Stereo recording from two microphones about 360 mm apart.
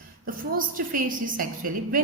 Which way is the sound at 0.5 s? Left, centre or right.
Right.